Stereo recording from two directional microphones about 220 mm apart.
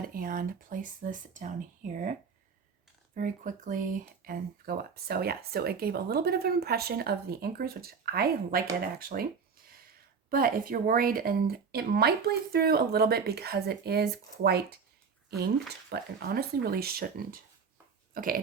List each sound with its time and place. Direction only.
0.0 s speech: 40° right (ahead or behind)
3.2 s speech: 35° right (ahead or behind)
18.1 s dog: 40° right (ahead or behind)